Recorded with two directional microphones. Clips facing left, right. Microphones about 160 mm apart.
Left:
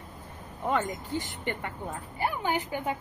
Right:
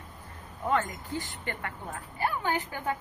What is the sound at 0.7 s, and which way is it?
A woman's voice, 20° left (ahead or behind).